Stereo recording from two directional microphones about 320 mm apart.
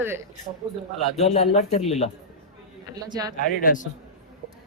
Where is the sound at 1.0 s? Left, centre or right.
Centre.